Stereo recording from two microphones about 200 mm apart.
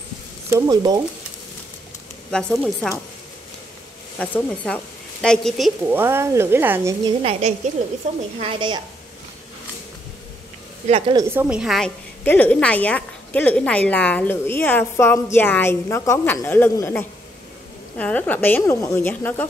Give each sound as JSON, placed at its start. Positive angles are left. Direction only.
{"t": 0.5, "sound": "speech", "side_deg": -15}
{"t": 2.3, "sound": "speech", "side_deg": 5}
{"t": 4.2, "sound": "a woman's voice", "side_deg": 5}
{"t": 5.9, "sound": "speech", "side_deg": -10}
{"t": 7.2, "sound": "speech", "side_deg": -30}
{"t": 10.9, "sound": "speech", "side_deg": -30}
{"t": 11.1, "sound": "a woman's voice", "side_deg": -10}